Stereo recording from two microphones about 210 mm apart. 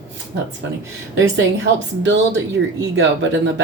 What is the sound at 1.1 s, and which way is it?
Speech, 60° right (ahead or behind).